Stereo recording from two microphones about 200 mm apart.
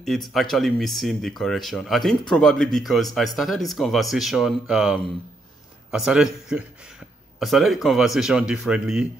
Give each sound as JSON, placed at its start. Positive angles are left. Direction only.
{"t": 0.0, "sound": "speech", "side_deg": 0}